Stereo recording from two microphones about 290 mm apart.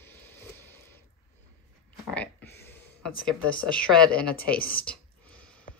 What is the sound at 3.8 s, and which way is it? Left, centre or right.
Speech, centre.